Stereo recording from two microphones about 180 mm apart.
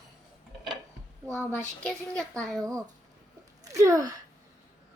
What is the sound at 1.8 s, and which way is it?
Speech, 5° left (ahead or behind).